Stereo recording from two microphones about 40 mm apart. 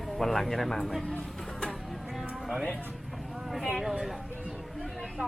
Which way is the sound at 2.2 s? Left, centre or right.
Centre.